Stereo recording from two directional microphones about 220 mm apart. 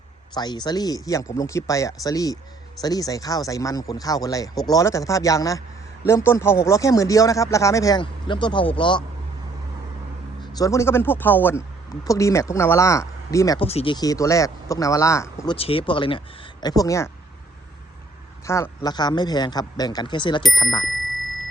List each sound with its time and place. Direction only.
0.3 s speech: 20° left (ahead or behind)
10.4 s speech: 15° left (ahead or behind)
15.5 s speech: 25° left (ahead or behind)
18.4 s speech: 15° left (ahead or behind)